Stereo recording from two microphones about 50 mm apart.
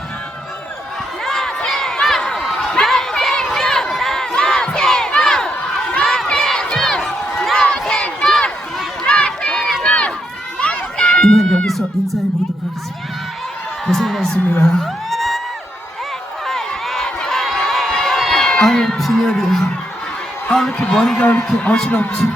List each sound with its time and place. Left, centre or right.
1.2 s crowd: centre
2.6 s a sound: centre
3.9 s crowd: centre
6.3 s a sound: centre
9.0 s run: centre
11.2 s music: centre
13.8 s a woman's voice: centre
14.6 s music: centre
16.5 s crowd: centre
17.2 s a sound: centre
17.9 s run: centre
18.6 s music: centre
20.5 s a sound: centre
21.2 s a man's voice: left